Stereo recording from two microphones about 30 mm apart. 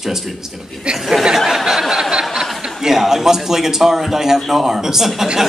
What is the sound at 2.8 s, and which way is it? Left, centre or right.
Speech, centre.